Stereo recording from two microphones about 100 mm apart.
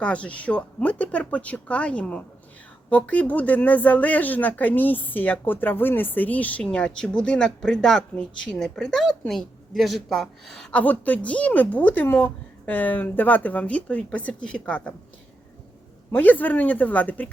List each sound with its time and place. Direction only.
0.0 s a woman's voice: 10° left (ahead or behind)
10.7 s a woman's voice: 15° left (ahead or behind)
16.1 s a woman's voice: 15° left (ahead or behind)